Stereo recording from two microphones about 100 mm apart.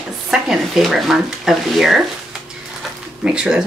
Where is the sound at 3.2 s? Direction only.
10° right (ahead or behind).